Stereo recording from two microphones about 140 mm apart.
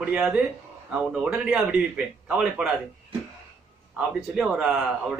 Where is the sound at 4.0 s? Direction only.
5° right (ahead or behind).